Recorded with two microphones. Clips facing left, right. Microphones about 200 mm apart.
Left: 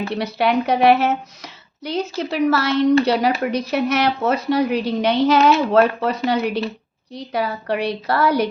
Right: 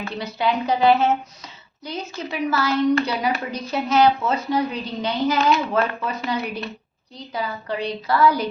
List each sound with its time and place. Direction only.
0.1 s speech: 70° left (ahead or behind)